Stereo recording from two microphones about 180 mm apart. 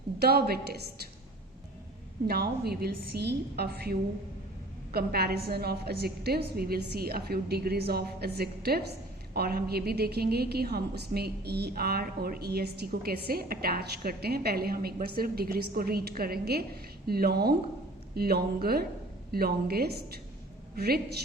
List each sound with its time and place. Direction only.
0.2 s a woman's voice: 60° right (ahead or behind)
2.2 s a woman's voice: 60° right (ahead or behind)